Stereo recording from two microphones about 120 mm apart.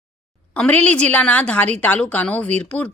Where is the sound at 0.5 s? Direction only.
10° left (ahead or behind).